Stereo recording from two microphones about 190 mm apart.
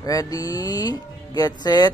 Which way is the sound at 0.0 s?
20° left (ahead or behind).